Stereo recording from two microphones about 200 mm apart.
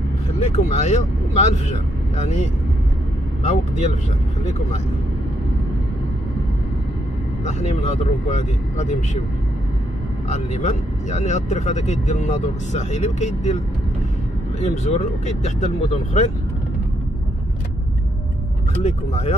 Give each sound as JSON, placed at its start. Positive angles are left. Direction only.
{"t": 0.3, "sound": "speech", "side_deg": 30}
{"t": 3.4, "sound": "speech", "side_deg": 35}
{"t": 8.4, "sound": "speech", "side_deg": 35}
{"t": 10.3, "sound": "speech", "side_deg": 35}
{"t": 14.6, "sound": "speech", "side_deg": 35}
{"t": 18.8, "sound": "speech", "side_deg": 30}